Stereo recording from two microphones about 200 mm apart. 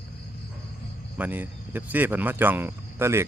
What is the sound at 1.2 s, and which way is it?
Speech, 10° right (ahead or behind).